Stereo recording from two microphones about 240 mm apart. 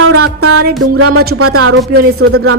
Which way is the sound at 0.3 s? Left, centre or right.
Right.